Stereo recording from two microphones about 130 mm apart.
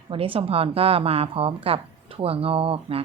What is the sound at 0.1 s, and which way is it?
A woman's voice, 45° right (ahead or behind).